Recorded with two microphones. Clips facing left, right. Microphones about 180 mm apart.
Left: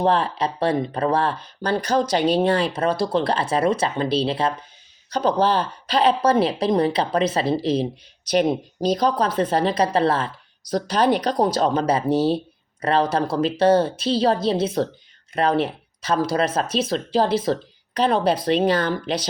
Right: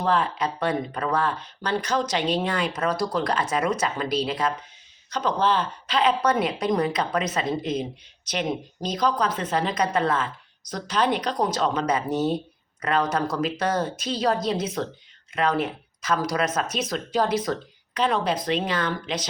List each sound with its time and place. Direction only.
0.0 s a woman's voice: 30° left (ahead or behind)